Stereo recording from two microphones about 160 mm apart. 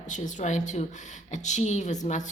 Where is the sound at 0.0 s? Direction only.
50° left (ahead or behind).